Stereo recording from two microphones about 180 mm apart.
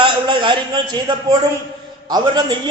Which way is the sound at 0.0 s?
25° right (ahead or behind).